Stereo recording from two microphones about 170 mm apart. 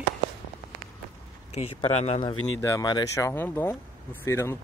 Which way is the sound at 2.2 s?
20° left (ahead or behind).